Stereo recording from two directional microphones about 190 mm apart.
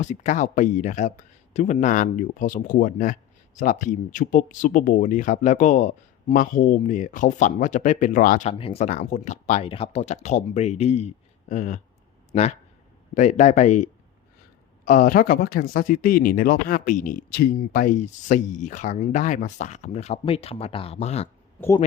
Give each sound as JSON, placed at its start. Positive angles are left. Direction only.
{"t": 0.0, "sound": "speech", "side_deg": 40}
{"t": 8.5, "sound": "speech", "side_deg": 30}